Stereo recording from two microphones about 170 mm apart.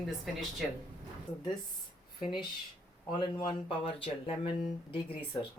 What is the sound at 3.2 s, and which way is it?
Speech, 25° left (ahead or behind).